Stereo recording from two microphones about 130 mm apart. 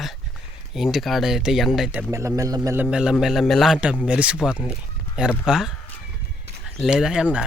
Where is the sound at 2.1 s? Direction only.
25° right (ahead or behind).